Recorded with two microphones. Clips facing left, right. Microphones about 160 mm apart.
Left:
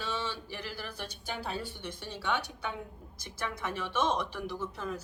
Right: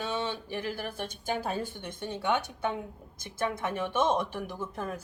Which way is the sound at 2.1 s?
20° right (ahead or behind).